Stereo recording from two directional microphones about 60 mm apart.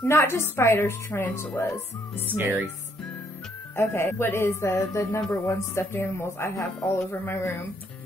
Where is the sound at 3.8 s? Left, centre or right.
Left.